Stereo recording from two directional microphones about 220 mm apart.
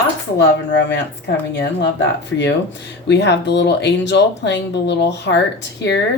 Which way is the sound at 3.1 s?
50° left (ahead or behind).